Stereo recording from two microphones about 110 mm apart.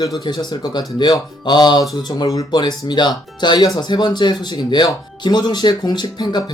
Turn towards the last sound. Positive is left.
turn(degrees=40)  # may be behind; listen again after turning